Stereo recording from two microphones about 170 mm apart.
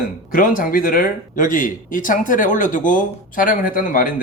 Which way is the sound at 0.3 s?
55° left (ahead or behind).